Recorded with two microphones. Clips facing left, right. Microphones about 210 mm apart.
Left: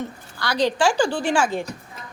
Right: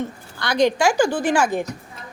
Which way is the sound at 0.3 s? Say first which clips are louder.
Right 3 dB; 15° right (ahead or behind).